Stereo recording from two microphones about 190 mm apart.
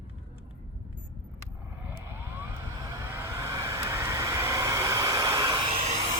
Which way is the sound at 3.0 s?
10° right (ahead or behind).